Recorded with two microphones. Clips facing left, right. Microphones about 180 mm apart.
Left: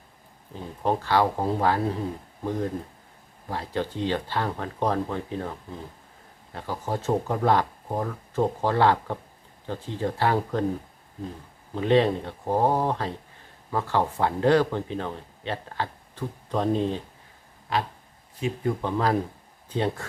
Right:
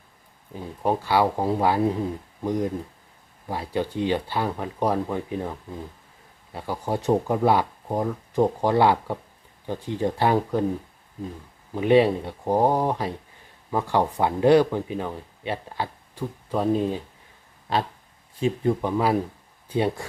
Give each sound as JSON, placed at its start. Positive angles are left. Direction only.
{"t": 0.5, "sound": "speech", "side_deg": -10}
{"t": 11.7, "sound": "speech", "side_deg": -10}
{"t": 18.3, "sound": "speech", "side_deg": -30}
{"t": 18.8, "sound": "speech", "side_deg": -10}